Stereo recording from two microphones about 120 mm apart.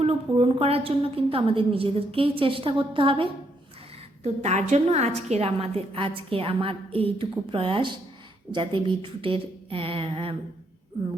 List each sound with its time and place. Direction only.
0.0 s a woman's voice: 55° right (ahead or behind)
4.2 s a woman's voice: 65° right (ahead or behind); by 10.3 s 50° right (ahead or behind)